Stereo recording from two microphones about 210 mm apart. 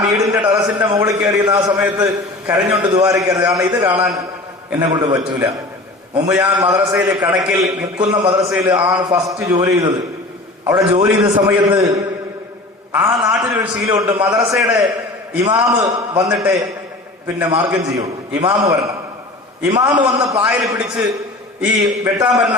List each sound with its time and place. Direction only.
0.1 s a man's voice: 15° right (ahead or behind)